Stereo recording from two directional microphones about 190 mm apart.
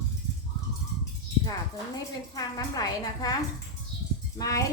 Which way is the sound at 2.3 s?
20° left (ahead or behind).